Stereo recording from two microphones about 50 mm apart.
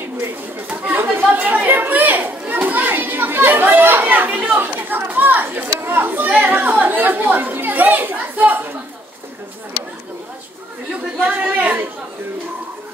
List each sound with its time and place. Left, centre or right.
0.8 s chatter: right
1.3 s children playing: right
4.6 s chatter: right
6.6 s children playing: right
11.1 s chatter: right